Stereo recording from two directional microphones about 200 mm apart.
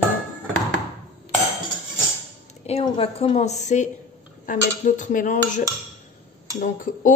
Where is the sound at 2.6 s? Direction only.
30° left (ahead or behind).